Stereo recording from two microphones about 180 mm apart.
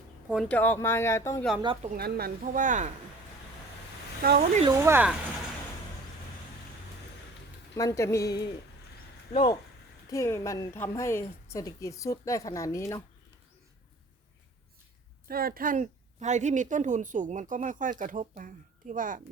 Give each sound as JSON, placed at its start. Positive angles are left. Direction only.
{"t": 0.3, "sound": "a woman's voice", "side_deg": 0}
{"t": 1.6, "sound": "speech", "side_deg": -30}
{"t": 1.9, "sound": "a woman's voice", "side_deg": -60}
{"t": 4.2, "sound": "speech", "side_deg": -60}
{"t": 4.7, "sound": "speech", "side_deg": -15}
{"t": 7.8, "sound": "a woman's voice", "side_deg": 15}
{"t": 10.1, "sound": "a woman's voice", "side_deg": 15}
{"t": 15.3, "sound": "a woman's voice", "side_deg": -55}